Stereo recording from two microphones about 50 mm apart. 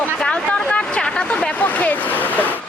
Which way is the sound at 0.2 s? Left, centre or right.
Left.